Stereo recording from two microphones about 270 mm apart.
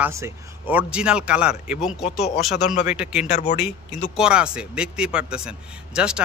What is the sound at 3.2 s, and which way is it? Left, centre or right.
Speech, left.